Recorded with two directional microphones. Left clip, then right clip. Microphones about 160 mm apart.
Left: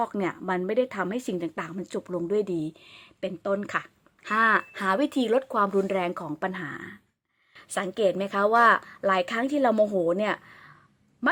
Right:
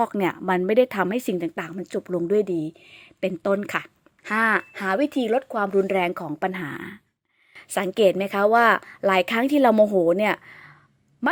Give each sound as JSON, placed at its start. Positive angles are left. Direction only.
{"t": 0.0, "sound": "a woman's voice", "side_deg": -30}
{"t": 3.2, "sound": "speech", "side_deg": -35}
{"t": 5.9, "sound": "a woman's voice", "side_deg": -20}
{"t": 9.7, "sound": "a woman's voice", "side_deg": -20}
{"t": 11.2, "sound": "speech", "side_deg": -15}